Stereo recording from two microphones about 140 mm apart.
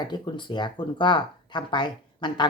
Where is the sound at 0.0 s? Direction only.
30° left (ahead or behind).